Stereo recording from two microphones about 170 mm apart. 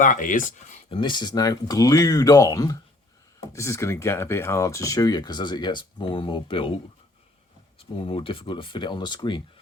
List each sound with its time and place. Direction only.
0.0 s speech: 50° left (ahead or behind)
0.9 s speech: 30° left (ahead or behind)
7.8 s speech: 30° left (ahead or behind)